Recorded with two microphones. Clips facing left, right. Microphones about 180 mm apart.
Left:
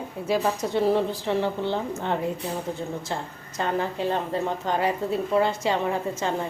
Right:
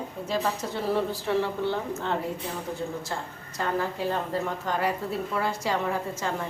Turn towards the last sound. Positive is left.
turn(degrees=20)  # may be behind; listen again after turning